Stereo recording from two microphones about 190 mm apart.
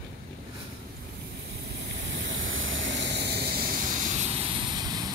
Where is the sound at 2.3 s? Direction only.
90° right; by 3.7 s 50° right (ahead or behind).